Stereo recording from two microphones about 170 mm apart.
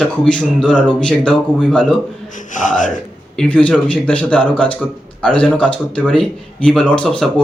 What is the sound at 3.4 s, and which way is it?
A man's voice, 10° left (ahead or behind).